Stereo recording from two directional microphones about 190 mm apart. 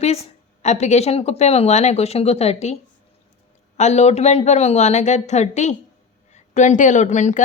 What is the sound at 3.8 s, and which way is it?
A woman's voice, 35° left (ahead or behind).